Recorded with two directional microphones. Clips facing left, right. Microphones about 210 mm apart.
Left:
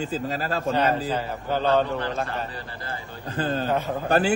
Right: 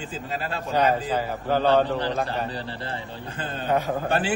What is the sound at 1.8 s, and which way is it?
A man's voice, 30° right (ahead or behind).